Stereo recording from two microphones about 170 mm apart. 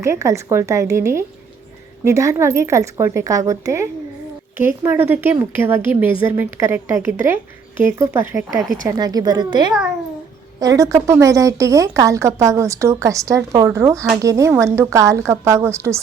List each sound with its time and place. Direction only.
0.0 s a woman's voice: 15° right (ahead or behind)